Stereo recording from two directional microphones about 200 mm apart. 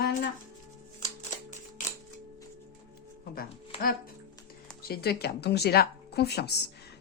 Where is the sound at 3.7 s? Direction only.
30° left (ahead or behind).